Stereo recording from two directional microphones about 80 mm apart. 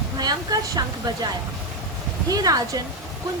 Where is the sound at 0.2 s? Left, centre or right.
Right.